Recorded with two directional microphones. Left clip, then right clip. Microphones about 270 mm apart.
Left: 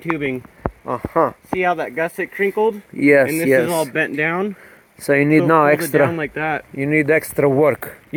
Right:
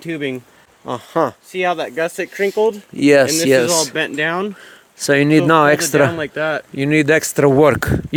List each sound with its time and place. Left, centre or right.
0.0 s speech: centre
0.9 s speech: right
1.5 s speech: centre
3.0 s speech: right
3.9 s speech: centre
5.0 s speech: right
6.1 s speech: centre
6.8 s speech: right